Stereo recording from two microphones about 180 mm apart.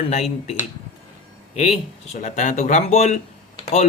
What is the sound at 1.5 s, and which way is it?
A man's voice, 35° left (ahead or behind).